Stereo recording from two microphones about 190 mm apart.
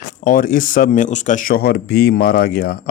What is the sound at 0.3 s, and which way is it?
Speech, 50° left (ahead or behind).